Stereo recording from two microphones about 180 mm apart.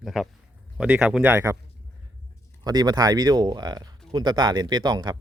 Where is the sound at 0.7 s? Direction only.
5° right (ahead or behind).